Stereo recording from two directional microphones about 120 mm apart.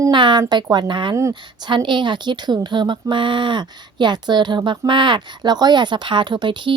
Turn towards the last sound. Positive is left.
turn(degrees=-40)  # may be behind; listen again after turning